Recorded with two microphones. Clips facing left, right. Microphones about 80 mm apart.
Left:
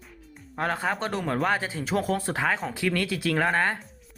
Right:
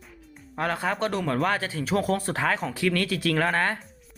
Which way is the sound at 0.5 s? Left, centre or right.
Centre.